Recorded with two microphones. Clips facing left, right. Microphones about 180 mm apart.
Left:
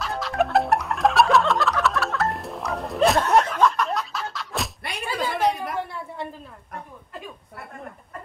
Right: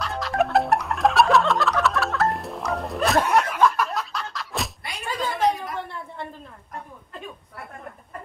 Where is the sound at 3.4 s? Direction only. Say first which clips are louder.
Even; 5° right (ahead or behind); by 6.2 s 10° left (ahead or behind).